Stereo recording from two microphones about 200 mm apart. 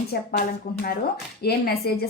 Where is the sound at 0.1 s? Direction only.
45° left (ahead or behind).